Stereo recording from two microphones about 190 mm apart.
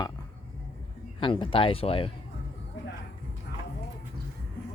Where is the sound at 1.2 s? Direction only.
25° left (ahead or behind).